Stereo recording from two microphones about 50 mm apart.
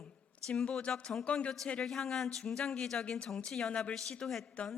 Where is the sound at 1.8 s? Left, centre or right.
Centre.